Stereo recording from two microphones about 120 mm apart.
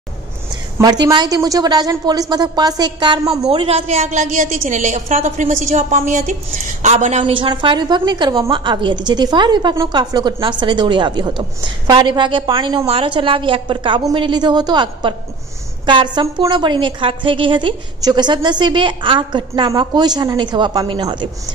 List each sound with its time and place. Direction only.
0.7 s a woman's voice: 30° right (ahead or behind)
3.4 s a woman's voice: 55° right (ahead or behind); by 6.3 s 90° right
6.8 s a woman's voice: 75° right (ahead or behind)
7.2 s a woman's voice: 45° right (ahead or behind)